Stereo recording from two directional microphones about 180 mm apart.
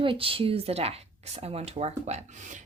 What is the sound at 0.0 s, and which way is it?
A woman's voice, 30° right (ahead or behind).